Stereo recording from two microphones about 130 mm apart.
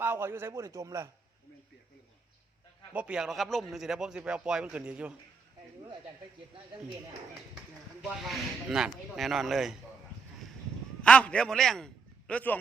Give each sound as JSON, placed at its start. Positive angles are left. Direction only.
{"t": 0.0, "sound": "a man's voice", "side_deg": -15}
{"t": 2.9, "sound": "speech", "side_deg": -10}
{"t": 8.0, "sound": "speech", "side_deg": 0}
{"t": 11.0, "sound": "speech", "side_deg": 10}